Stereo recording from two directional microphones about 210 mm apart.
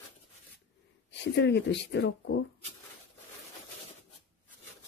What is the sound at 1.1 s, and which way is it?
Speech, 55° left (ahead or behind).